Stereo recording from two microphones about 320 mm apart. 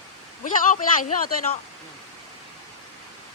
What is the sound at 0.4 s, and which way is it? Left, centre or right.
Speech, left.